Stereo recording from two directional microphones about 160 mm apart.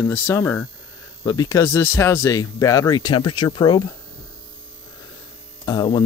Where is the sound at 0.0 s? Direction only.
15° left (ahead or behind).